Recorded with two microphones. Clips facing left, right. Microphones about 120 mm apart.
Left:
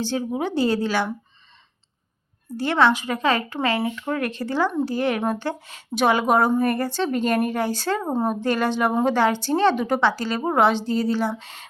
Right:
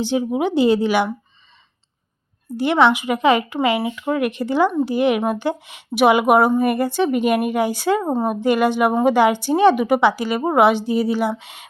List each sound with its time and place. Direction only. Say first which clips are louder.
0.0 s a woman's voice: right 5 dB; 15° right (ahead or behind)
2.6 s a woman's voice: right 3 dB; 15° right (ahead or behind)
8.1 s a woman's voice: right 2 dB; centre (ahead or behind)
8.4 s a woman's voice: right 5 dB; 15° right (ahead or behind)